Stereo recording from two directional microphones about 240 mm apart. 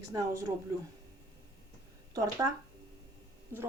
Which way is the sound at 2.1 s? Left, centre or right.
Centre.